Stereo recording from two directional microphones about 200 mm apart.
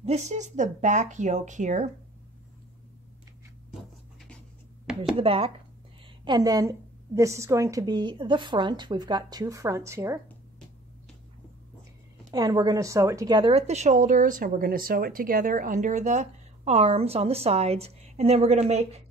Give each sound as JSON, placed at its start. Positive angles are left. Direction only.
{"t": 0.0, "sound": "a woman's voice", "side_deg": -35}
{"t": 4.9, "sound": "speech", "side_deg": -5}
{"t": 5.2, "sound": "a woman's voice", "side_deg": -30}
{"t": 12.3, "sound": "a woman's voice", "side_deg": -20}